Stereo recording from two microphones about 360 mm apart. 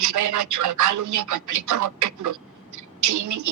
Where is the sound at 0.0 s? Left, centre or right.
Right.